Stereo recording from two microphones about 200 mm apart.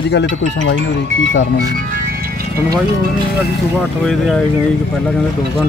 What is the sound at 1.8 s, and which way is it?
Music, 45° right (ahead or behind).